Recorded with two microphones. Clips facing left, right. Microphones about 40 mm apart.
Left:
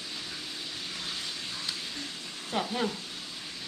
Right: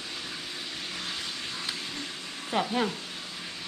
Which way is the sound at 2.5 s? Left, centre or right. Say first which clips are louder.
Right 3 dB; centre.